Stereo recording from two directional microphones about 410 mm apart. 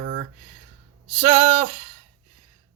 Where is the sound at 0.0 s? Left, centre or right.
Centre.